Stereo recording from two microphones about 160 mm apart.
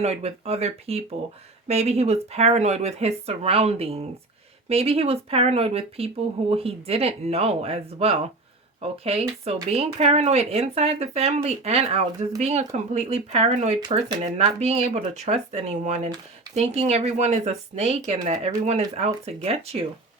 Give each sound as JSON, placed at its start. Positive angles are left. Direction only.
{"t": 0.0, "sound": "speech", "side_deg": -40}